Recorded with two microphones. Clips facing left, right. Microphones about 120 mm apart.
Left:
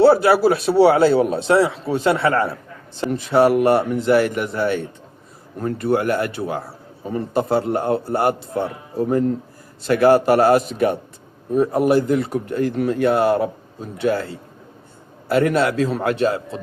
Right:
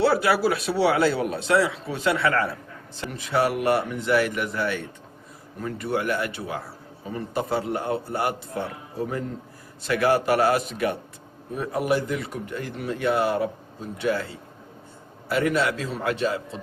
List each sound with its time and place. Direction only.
0.0 s a man's voice: 35° left (ahead or behind)
5.5 s a man's voice: 40° left (ahead or behind)
15.3 s speech: 45° left (ahead or behind)